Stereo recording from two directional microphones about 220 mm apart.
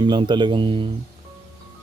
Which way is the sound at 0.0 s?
20° right (ahead or behind).